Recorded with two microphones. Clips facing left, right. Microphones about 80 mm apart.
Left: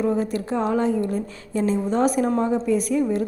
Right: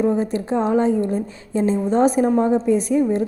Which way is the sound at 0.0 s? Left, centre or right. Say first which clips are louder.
Right 3 dB; right.